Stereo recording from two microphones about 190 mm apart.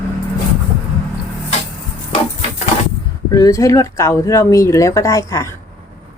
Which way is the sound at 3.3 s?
15° left (ahead or behind).